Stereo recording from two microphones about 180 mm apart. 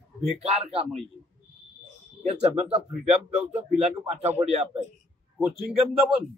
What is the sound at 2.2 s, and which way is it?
Speech, 35° right (ahead or behind).